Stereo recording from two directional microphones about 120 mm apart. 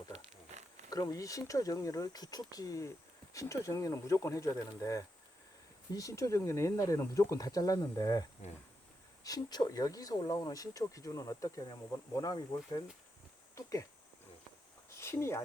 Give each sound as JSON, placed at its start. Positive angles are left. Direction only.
{"t": 0.9, "sound": "speech", "side_deg": 30}
{"t": 9.2, "sound": "speech", "side_deg": 30}
{"t": 14.9, "sound": "a sound", "side_deg": 20}